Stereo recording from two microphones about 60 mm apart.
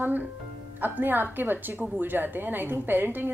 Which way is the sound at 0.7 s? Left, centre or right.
Right.